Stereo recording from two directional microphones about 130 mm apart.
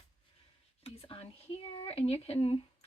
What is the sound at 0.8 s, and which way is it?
Speech, 50° left (ahead or behind).